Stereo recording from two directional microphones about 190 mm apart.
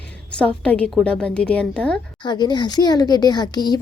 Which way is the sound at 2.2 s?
25° left (ahead or behind).